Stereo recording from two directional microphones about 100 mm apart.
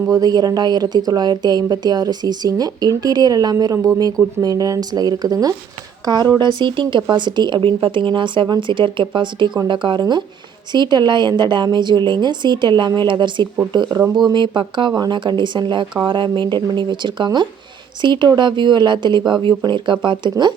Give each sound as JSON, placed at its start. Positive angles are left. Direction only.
{"t": 0.1, "sound": "a woman's voice", "side_deg": -40}